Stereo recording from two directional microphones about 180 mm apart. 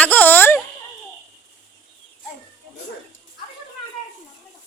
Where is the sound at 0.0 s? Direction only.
10° left (ahead or behind).